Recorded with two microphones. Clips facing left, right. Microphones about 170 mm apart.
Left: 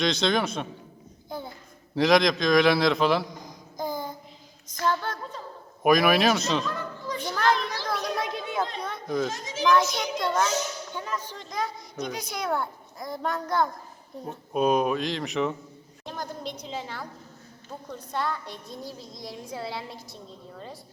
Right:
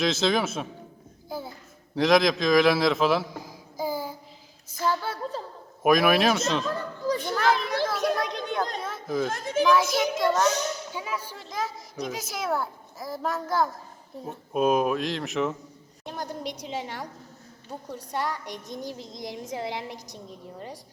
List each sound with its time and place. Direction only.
0.0 s speech: 5° right (ahead or behind)
1.3 s a sound: 5° right (ahead or behind)
2.0 s a man's voice: centre (ahead or behind)
4.7 s child singing: 5° right (ahead or behind)
5.8 s speech: centre (ahead or behind)
6.7 s a sound: 35° right (ahead or behind)
7.3 s children playing: 5° right (ahead or behind)
7.9 s a sound: 5° right (ahead or behind)
8.8 s children playing: centre (ahead or behind)
9.3 s a child's voice: 55° right (ahead or behind)
9.9 s a child's voice: 5° right (ahead or behind)
16.0 s a child's voice: 10° right (ahead or behind)